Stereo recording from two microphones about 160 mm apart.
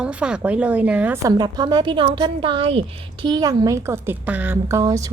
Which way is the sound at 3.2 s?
25° right (ahead or behind).